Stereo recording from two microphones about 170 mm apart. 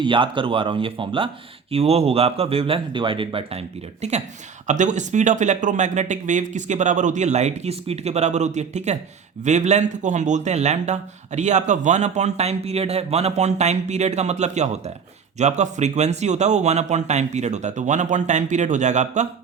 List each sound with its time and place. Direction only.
0.0 s speech: 30° right (ahead or behind)
4.0 s speech: 40° right (ahead or behind)